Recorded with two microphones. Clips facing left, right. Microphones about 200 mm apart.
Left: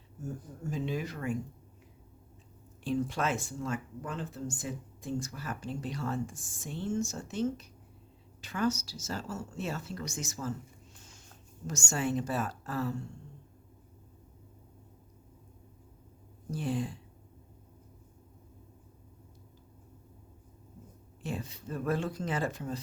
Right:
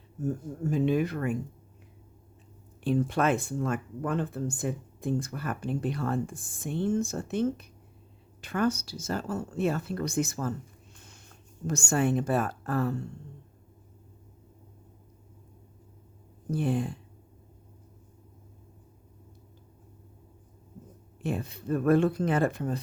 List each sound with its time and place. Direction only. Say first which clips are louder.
0.7 s speech: right 9 dB; 55° right (ahead or behind)
2.8 s speech: right 6 dB; 60° right (ahead or behind)
11.6 s speech: right 6 dB; 55° right (ahead or behind)
16.5 s speech: right 5 dB; 55° right (ahead or behind)
21.2 s speech: right 6 dB; 60° right (ahead or behind)